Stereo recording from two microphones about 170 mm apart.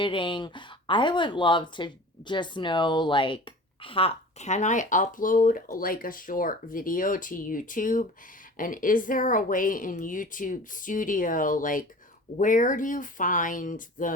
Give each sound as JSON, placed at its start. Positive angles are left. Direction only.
{"t": 0.0, "sound": "speech", "side_deg": 30}